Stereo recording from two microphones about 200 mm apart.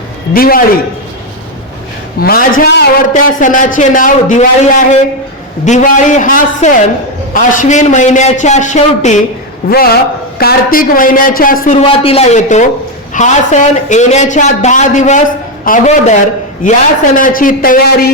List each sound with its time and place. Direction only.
0.3 s speech: 45° left (ahead or behind)
2.2 s speech: 50° left (ahead or behind)
9.6 s speech: 50° left (ahead or behind)
11.8 s speech: 30° left (ahead or behind)
17.2 s speech: 40° left (ahead or behind)